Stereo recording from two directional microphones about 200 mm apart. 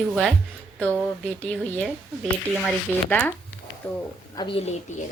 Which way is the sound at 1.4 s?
5° left (ahead or behind).